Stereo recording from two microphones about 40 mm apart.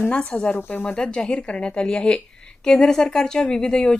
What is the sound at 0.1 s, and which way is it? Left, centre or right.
Speech, left.